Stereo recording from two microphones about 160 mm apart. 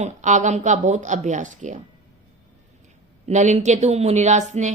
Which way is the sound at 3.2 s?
45° right (ahead or behind).